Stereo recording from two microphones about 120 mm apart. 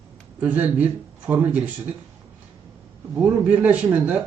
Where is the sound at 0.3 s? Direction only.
15° right (ahead or behind).